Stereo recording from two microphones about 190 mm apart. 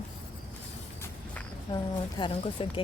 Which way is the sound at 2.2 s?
25° left (ahead or behind).